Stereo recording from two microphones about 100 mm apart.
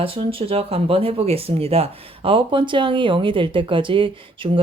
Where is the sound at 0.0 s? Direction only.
65° right (ahead or behind).